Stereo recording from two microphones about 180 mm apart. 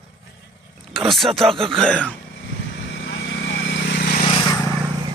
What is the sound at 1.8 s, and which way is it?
Speech, 5° left (ahead or behind).